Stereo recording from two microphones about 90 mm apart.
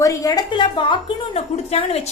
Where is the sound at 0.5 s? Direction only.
60° left (ahead or behind).